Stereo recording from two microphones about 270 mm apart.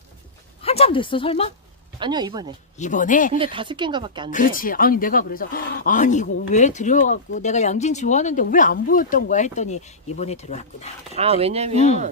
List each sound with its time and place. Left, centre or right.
0.6 s speech: left
2.0 s speech: centre
2.8 s speech: left
3.3 s speech: centre
4.3 s speech: left
11.1 s speech: right